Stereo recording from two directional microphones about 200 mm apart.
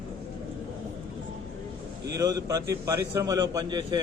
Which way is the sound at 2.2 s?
20° right (ahead or behind).